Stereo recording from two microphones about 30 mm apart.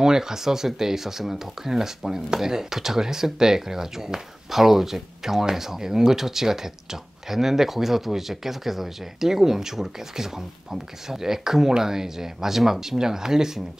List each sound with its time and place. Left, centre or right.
0.0 s speech: centre